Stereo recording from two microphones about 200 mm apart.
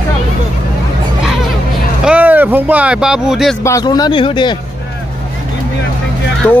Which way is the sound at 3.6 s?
15° left (ahead or behind).